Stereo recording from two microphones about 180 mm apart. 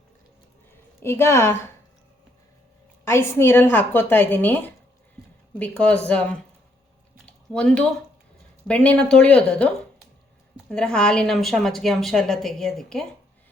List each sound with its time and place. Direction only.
1.0 s a woman's voice: 15° left (ahead or behind)
3.0 s a woman's voice: 15° left (ahead or behind)
7.3 s a sound: 5° left (ahead or behind)
8.6 s a woman's voice: 5° left (ahead or behind)
10.7 s a woman's voice: 5° left (ahead or behind)